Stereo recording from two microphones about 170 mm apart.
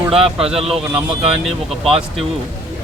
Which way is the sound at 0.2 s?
35° right (ahead or behind).